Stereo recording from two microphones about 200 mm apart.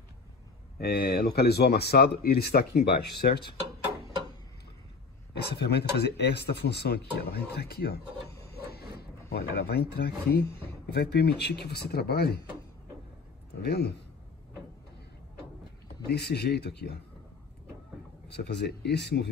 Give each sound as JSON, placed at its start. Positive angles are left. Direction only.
{"t": 0.7, "sound": "speech", "side_deg": 50}
{"t": 5.3, "sound": "speech", "side_deg": 55}
{"t": 8.5, "sound": "a sound", "side_deg": 50}
{"t": 10.9, "sound": "speech", "side_deg": 55}
{"t": 13.6, "sound": "speech", "side_deg": 55}
{"t": 16.1, "sound": "speech", "side_deg": 55}
{"t": 18.3, "sound": "speech", "side_deg": 55}